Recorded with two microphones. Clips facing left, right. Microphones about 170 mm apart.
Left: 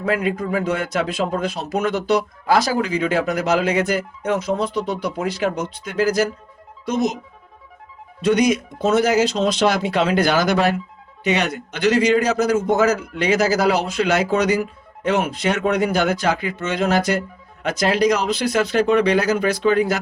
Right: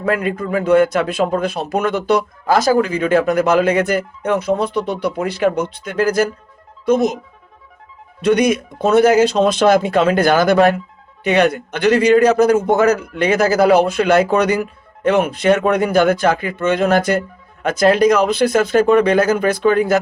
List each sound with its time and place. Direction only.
0.0 s a man's voice: 55° right (ahead or behind)
8.2 s a man's voice: 60° right (ahead or behind)